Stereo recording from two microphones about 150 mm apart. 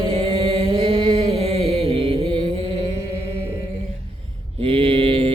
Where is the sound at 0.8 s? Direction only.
45° right (ahead or behind).